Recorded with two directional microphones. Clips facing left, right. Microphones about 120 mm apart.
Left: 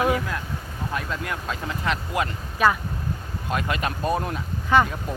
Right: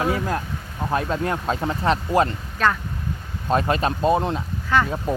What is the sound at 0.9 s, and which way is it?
Speech, 40° right (ahead or behind).